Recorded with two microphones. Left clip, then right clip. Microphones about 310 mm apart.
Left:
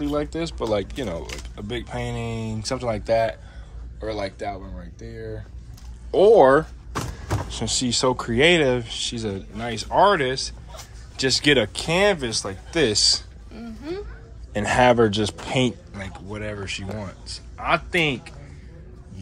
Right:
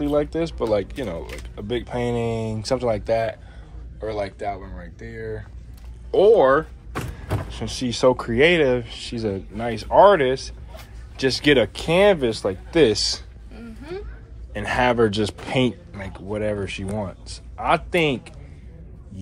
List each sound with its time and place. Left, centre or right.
0.0 s speech: centre
14.5 s speech: centre